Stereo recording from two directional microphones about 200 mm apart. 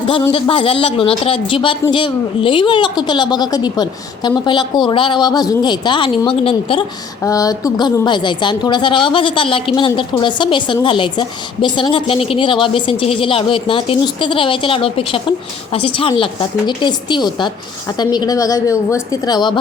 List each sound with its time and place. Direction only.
0.1 s a woman's voice: 25° left (ahead or behind)
7.2 s a woman's voice: 15° left (ahead or behind)